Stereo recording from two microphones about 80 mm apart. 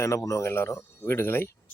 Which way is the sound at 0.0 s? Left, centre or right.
Left.